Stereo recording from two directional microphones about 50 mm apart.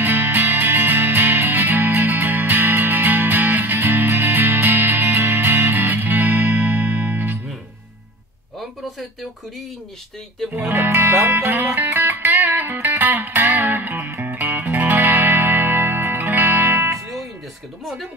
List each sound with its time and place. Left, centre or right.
0.0 s music: right
10.7 s music: right